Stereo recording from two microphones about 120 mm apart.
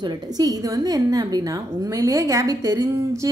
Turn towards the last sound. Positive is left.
turn(degrees=-25)  # may be behind; listen again after turning